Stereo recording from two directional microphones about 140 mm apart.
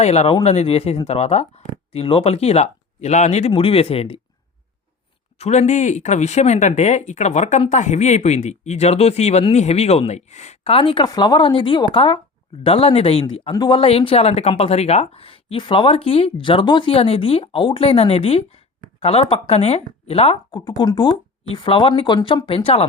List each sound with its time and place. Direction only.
0.0 s speech: 50° left (ahead or behind)
3.5 s speech: 40° left (ahead or behind)
5.4 s speech: 55° left (ahead or behind)
20.5 s speech: 35° left (ahead or behind)